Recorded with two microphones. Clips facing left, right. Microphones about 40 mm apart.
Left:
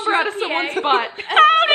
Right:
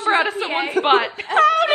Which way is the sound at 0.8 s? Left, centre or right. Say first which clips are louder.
Right 4 dB; left.